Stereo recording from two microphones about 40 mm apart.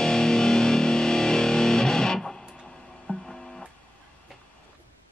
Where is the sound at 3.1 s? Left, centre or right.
Left.